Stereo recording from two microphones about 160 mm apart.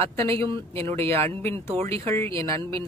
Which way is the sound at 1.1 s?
15° left (ahead or behind).